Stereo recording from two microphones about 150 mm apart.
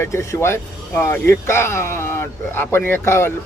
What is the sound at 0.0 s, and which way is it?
A man's voice, 20° left (ahead or behind).